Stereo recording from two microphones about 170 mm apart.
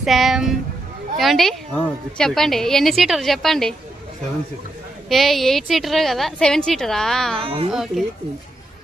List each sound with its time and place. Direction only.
0.0 s a woman's voice: centre (ahead or behind)
5.0 s a woman's voice: centre (ahead or behind)
7.4 s a woman's voice: 30° right (ahead or behind)
7.7 s a woman's voice: centre (ahead or behind)